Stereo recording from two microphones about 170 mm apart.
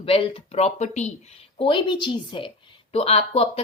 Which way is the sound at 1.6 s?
30° left (ahead or behind).